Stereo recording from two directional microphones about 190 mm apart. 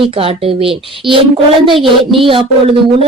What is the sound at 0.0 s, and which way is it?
Speech, 30° right (ahead or behind).